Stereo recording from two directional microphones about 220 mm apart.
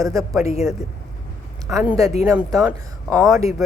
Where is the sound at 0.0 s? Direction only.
15° right (ahead or behind).